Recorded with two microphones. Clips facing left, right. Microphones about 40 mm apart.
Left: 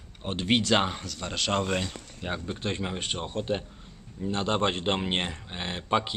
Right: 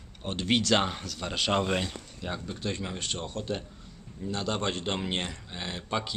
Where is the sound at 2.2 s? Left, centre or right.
Left.